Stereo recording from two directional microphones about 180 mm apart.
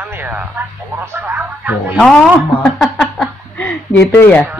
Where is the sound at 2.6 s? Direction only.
5° left (ahead or behind).